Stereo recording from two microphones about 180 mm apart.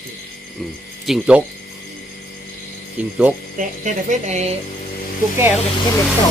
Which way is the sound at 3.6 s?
45° right (ahead or behind).